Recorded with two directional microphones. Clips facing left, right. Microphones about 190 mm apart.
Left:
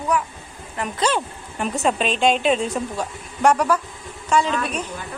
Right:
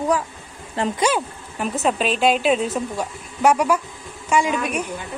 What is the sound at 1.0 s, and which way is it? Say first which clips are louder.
A woman's voice: left 2 dB; 5° right (ahead or behind).